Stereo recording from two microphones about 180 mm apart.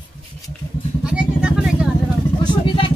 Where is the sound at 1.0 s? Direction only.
5° right (ahead or behind).